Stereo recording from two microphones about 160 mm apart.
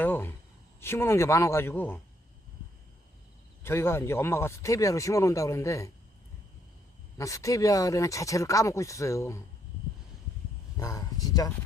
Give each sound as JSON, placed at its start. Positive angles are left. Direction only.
{"t": 0.0, "sound": "a sound", "side_deg": 10}
{"t": 0.8, "sound": "speech", "side_deg": 15}
{"t": 3.6, "sound": "speech", "side_deg": 15}
{"t": 7.2, "sound": "speech", "side_deg": 20}
{"t": 10.8, "sound": "speech", "side_deg": 20}